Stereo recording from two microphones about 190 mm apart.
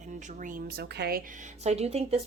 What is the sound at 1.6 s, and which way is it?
Speech, 35° right (ahead or behind).